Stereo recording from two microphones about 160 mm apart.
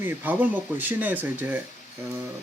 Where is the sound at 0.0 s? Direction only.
15° right (ahead or behind).